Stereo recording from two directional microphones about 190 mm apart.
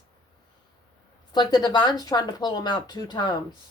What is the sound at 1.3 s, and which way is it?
Speech, 20° left (ahead or behind).